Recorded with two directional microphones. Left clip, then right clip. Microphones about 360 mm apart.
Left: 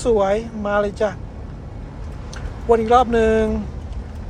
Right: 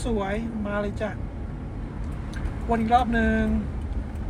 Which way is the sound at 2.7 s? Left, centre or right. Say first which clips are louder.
Left 8 dB; centre.